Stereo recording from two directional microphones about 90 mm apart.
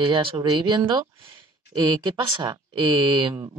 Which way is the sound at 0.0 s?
75° right (ahead or behind).